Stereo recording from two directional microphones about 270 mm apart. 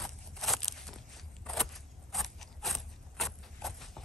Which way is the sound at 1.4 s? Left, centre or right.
Centre.